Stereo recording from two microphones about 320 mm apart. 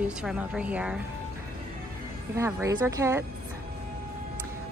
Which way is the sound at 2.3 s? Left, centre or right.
Centre.